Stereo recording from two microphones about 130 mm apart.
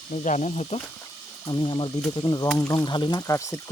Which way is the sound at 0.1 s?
70° left (ahead or behind).